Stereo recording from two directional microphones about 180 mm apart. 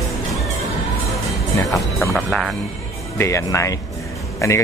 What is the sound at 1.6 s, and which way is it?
Speech, 20° left (ahead or behind).